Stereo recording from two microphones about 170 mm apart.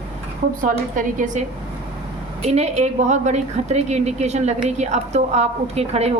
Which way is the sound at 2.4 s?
40° right (ahead or behind).